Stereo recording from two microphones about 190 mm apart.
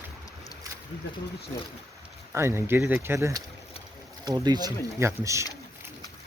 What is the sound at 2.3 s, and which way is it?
Speech, 15° right (ahead or behind).